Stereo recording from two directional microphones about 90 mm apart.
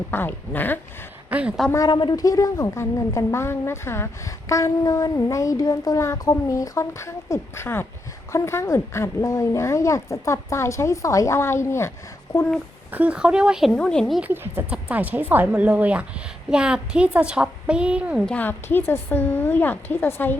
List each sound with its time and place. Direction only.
0.1 s a woman's voice: 20° left (ahead or behind)
1.3 s a woman's voice: 15° right (ahead or behind)
1.9 s speech: 60° left (ahead or behind)
2.2 s a woman's voice: 40° left (ahead or behind)
12.3 s speech: 45° left (ahead or behind)
12.9 s a woman's voice: 15° right (ahead or behind)
13.7 s speech: 10° left (ahead or behind)
14.2 s a woman's voice: 20° right (ahead or behind)
18.3 s a woman's voice: 20° left (ahead or behind)